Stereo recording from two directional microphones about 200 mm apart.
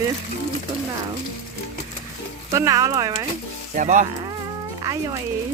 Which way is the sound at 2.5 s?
15° right (ahead or behind).